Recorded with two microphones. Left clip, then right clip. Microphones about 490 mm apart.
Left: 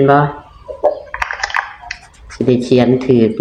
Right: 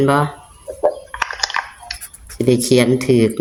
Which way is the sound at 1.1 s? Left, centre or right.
Right.